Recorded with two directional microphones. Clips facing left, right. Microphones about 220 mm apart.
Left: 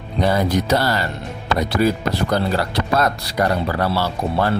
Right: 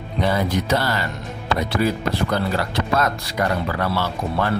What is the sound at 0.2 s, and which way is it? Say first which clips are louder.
Speech: left 3 dB; 40° left (ahead or behind).